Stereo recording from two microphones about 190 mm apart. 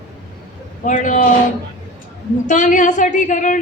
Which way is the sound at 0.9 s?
40° left (ahead or behind).